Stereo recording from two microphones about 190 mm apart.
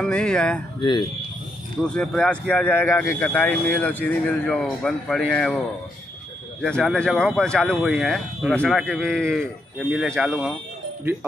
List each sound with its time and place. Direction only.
0.0 s speech: 5° left (ahead or behind)
0.7 s speech: 25° left (ahead or behind)
1.8 s speech: 5° left (ahead or behind)
6.6 s speech: centre (ahead or behind)